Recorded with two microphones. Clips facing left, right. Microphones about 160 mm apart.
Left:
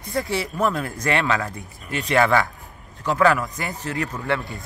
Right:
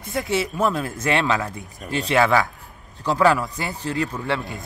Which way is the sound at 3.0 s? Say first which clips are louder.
Right 1 dB; 15° right (ahead or behind).